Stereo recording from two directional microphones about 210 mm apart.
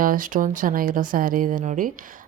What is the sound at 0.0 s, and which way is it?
Speech, 40° right (ahead or behind).